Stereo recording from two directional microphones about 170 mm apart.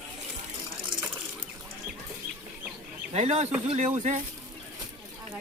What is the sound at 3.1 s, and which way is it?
Speech, 40° right (ahead or behind).